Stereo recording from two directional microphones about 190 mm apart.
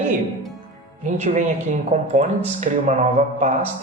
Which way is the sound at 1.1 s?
40° right (ahead or behind).